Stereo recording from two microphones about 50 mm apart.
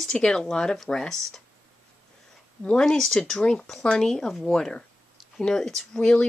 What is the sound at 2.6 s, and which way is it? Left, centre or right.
Speech, centre.